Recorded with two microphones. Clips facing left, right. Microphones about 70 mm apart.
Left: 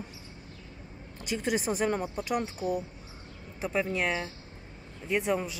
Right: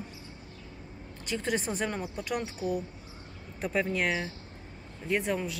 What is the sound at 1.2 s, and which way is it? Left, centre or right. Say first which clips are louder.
Speech: left 2 dB; centre.